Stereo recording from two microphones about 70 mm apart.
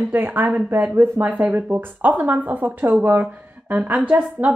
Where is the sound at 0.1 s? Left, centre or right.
Right.